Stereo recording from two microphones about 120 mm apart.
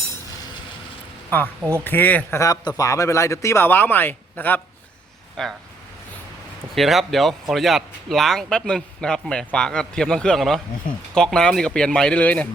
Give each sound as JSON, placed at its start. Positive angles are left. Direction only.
{"t": 1.7, "sound": "speech", "side_deg": 15}
{"t": 2.4, "sound": "speech", "side_deg": 30}
{"t": 5.4, "sound": "a man's voice", "side_deg": 5}
{"t": 6.7, "sound": "a man's voice", "side_deg": 0}